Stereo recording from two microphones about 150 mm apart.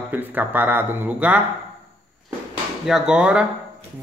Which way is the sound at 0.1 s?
10° right (ahead or behind).